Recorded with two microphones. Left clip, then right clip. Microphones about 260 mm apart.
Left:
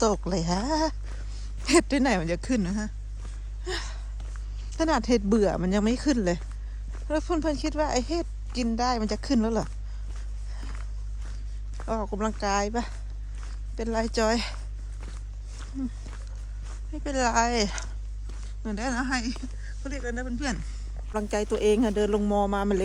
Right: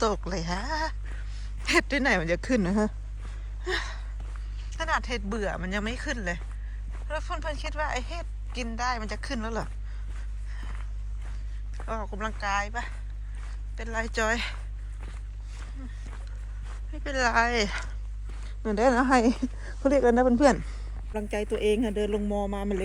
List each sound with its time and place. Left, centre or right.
0.0 s speech: centre
3.6 s a sound: centre
4.7 s speech: left
11.9 s speech: centre
16.9 s speech: centre